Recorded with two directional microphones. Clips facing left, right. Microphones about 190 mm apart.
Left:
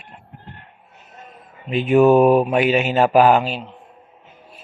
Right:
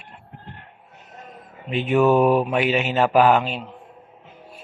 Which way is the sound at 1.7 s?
15° left (ahead or behind).